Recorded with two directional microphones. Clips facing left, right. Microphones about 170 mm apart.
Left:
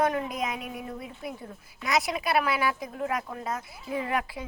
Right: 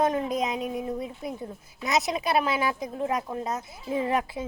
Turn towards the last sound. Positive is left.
turn(degrees=-25)  # may be behind; listen again after turning